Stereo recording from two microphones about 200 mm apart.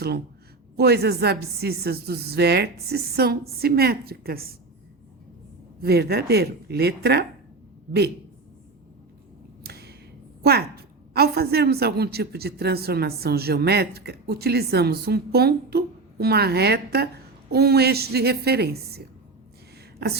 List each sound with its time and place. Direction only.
0.8 s a woman's voice: 55° right (ahead or behind)
5.8 s a woman's voice: 50° right (ahead or behind)
9.6 s a sound: 50° right (ahead or behind)
10.4 s a woman's voice: 50° right (ahead or behind)